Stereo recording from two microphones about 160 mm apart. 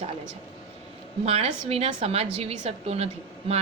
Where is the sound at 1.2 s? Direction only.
40° right (ahead or behind).